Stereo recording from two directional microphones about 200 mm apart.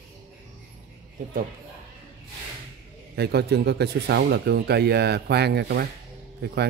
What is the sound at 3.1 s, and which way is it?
Speech, 55° right (ahead or behind).